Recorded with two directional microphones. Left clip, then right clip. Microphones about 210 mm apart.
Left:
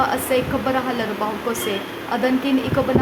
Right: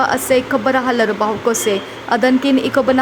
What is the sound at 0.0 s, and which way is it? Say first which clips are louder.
A woman's voice: right 5 dB; 25° right (ahead or behind).